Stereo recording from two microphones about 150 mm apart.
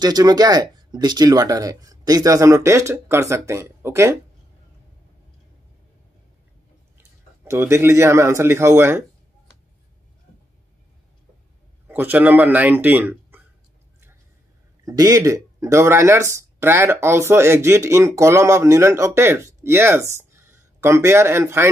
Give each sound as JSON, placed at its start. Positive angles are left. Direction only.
{"t": 0.0, "sound": "speech", "side_deg": -25}
{"t": 7.0, "sound": "speech", "side_deg": -15}
{"t": 11.9, "sound": "speech", "side_deg": -10}
{"t": 14.9, "sound": "speech", "side_deg": -25}